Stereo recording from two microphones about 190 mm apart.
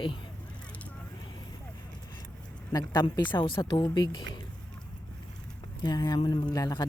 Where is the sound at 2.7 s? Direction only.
20° left (ahead or behind).